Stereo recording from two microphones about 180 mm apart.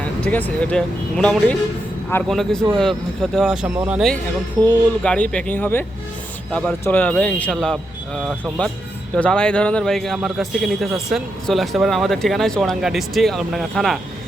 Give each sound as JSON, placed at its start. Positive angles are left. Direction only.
{"t": 0.3, "sound": "speech", "side_deg": 10}
{"t": 4.6, "sound": "speech", "side_deg": 10}